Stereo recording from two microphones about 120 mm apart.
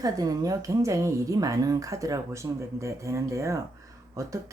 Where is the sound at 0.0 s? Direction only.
30° right (ahead or behind).